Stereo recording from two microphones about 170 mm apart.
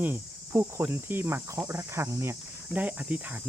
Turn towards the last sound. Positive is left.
turn(degrees=-10)  # may be behind; listen again after turning